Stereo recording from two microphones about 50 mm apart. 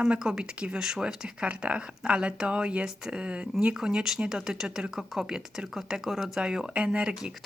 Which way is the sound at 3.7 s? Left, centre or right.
Centre.